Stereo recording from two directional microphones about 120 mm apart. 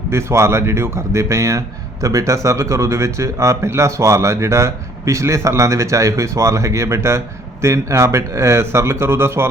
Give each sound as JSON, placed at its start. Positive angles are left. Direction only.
{"t": 0.1, "sound": "speech", "side_deg": -20}